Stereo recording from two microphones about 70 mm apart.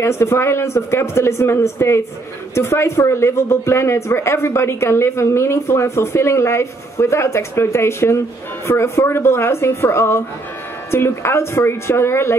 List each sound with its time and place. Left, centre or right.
0.0 s speech: left